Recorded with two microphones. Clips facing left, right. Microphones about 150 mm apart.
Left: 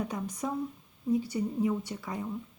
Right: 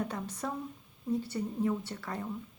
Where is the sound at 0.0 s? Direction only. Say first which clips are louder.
Left 2 dB; 15° left (ahead or behind).